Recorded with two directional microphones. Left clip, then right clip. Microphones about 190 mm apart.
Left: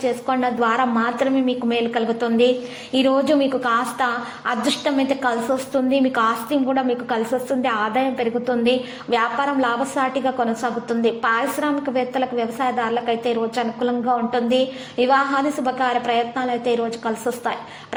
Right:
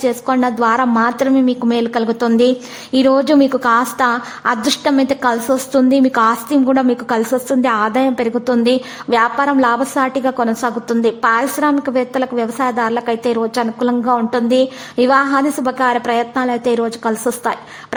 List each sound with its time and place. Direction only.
0.0 s a woman's voice: 40° right (ahead or behind)